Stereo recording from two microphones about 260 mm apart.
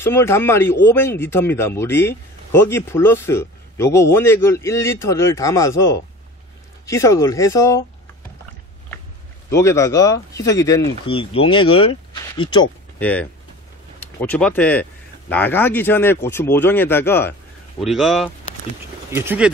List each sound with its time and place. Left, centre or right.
0.0 s speech: centre
9.5 s speech: centre
13.0 s speech: centre